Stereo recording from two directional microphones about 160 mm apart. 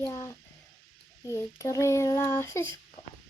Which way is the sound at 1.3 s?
20° left (ahead or behind).